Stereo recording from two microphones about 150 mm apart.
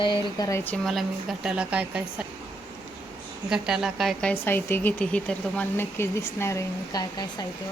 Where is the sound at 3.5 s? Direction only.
5° right (ahead or behind); by 7.4 s 25° left (ahead or behind).